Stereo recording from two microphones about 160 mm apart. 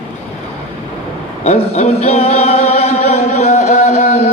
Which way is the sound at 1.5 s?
45° left (ahead or behind).